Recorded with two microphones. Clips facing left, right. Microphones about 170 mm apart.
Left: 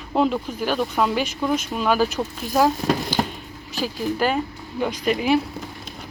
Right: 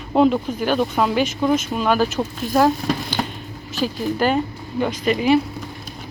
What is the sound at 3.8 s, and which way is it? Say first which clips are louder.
Speech: right 2 dB; 5° left (ahead or behind).